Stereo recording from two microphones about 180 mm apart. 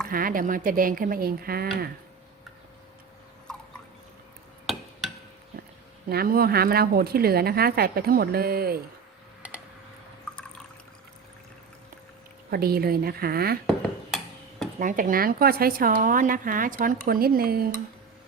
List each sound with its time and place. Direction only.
0.1 s a woman's voice: 50° right (ahead or behind)
3.5 s a sound: 5° left (ahead or behind)
6.1 s a woman's voice: 55° right (ahead or behind)
12.5 s a woman's voice: 60° right (ahead or behind)
14.8 s a woman's voice: 45° right (ahead or behind)